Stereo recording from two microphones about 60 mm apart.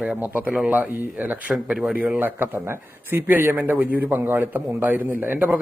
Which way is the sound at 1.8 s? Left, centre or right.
Right.